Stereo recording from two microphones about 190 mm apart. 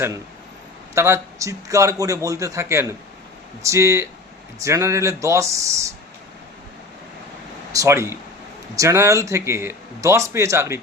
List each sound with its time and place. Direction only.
0.9 s speech: 15° right (ahead or behind)
7.7 s speech: 15° right (ahead or behind)